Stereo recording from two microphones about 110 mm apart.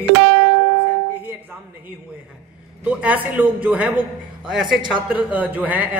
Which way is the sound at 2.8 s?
10° right (ahead or behind).